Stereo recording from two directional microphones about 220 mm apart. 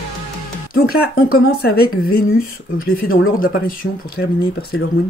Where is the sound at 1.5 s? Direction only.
45° left (ahead or behind).